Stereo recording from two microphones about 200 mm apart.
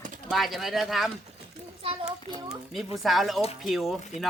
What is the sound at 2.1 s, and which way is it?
Speech, 20° right (ahead or behind).